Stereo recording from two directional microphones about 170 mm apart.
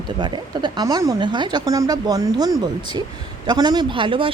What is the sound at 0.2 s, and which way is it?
A woman's voice, 30° right (ahead or behind).